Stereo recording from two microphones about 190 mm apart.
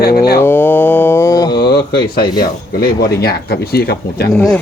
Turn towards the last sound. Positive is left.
turn(degrees=5)  # may be behind; listen again after turning